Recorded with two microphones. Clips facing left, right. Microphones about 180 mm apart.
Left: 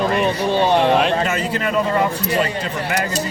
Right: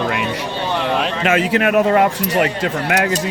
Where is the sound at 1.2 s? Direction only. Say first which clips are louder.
Right 6 dB; 85° right; by 3.0 s 65° right (ahead or behind).